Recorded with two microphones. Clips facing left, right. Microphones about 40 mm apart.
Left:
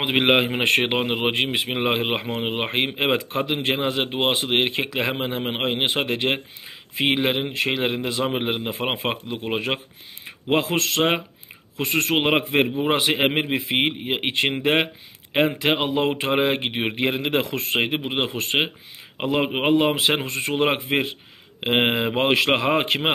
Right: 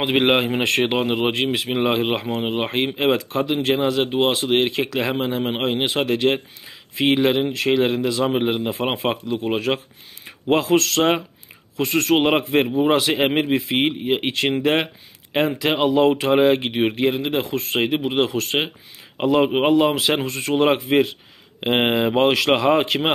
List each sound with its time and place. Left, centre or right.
0.0 s speech: left
0.7 s speech: left
0.9 s speech: left
1.7 s speech: left
2.0 s speech: left
17.9 s speech: left
19.1 s speech: centre